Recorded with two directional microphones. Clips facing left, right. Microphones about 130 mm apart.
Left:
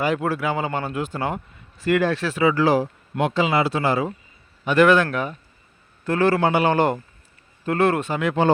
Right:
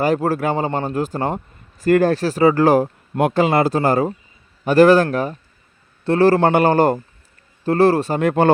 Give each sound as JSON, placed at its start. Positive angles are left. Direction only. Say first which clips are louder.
{"t": 0.0, "sound": "speech", "louder": "right 4 dB", "side_deg": -40}
{"t": 6.4, "sound": "speech", "louder": "right 4 dB", "side_deg": -50}